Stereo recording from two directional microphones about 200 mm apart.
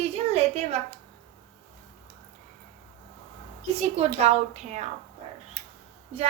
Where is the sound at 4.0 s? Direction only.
35° right (ahead or behind).